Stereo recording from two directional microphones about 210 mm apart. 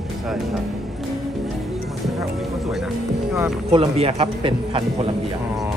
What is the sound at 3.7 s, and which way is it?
Speech, 25° right (ahead or behind).